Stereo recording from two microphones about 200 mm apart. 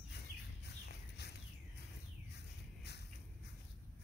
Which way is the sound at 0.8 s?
55° left (ahead or behind).